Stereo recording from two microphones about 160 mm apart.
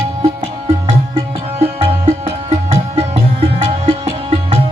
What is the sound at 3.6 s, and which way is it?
Music, 45° right (ahead or behind).